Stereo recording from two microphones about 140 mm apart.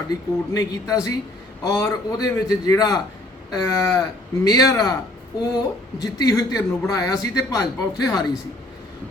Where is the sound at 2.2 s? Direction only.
25° left (ahead or behind).